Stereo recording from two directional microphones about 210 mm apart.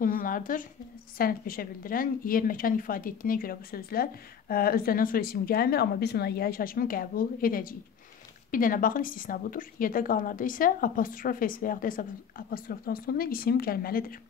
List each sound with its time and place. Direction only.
0.0 s a woman's voice: 40° left (ahead or behind)